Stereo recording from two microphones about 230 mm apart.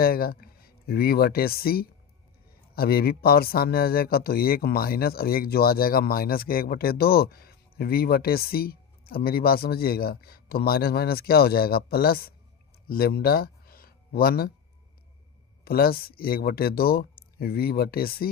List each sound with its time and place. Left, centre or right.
0.0 s speech: left
15.6 s speech: left